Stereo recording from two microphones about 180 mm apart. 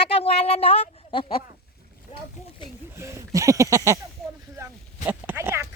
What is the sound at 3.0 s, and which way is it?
Speech, 15° right (ahead or behind).